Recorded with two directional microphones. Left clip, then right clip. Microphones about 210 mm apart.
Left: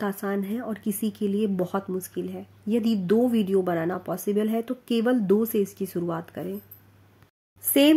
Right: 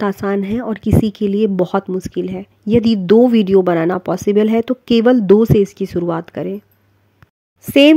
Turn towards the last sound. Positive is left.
turn(degrees=-40)  # may be behind; listen again after turning